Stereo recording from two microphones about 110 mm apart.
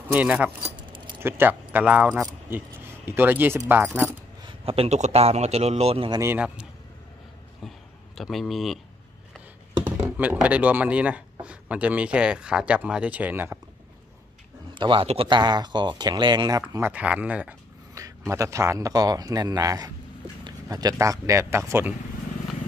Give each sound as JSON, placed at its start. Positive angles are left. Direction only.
{"t": 0.1, "sound": "speech", "side_deg": -15}
{"t": 4.4, "sound": "a sound", "side_deg": -45}
{"t": 4.7, "sound": "speech", "side_deg": -85}
{"t": 6.2, "sound": "speech", "side_deg": -10}
{"t": 8.2, "sound": "speech", "side_deg": 0}
{"t": 10.1, "sound": "speech", "side_deg": -15}
{"t": 14.7, "sound": "a man's voice", "side_deg": -50}
{"t": 16.8, "sound": "speech", "side_deg": -10}
{"t": 17.9, "sound": "a man's voice", "side_deg": -30}